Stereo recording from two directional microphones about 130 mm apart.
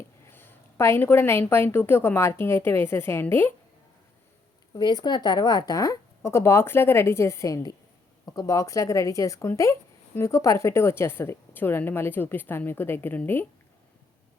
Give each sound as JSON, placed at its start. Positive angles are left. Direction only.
{"t": 0.3, "sound": "a woman's voice", "side_deg": 15}
{"t": 4.7, "sound": "a woman's voice", "side_deg": 30}